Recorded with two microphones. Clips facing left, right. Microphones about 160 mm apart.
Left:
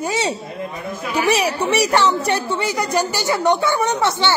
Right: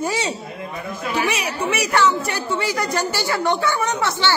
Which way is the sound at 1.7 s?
35° left (ahead or behind).